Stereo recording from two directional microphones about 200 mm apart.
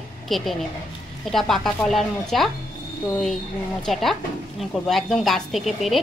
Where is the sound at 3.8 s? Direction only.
Centre (ahead or behind).